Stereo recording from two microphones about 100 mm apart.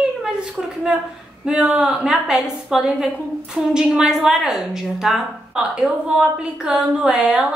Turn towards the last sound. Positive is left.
turn(degrees=-5)  # may be behind; listen again after turning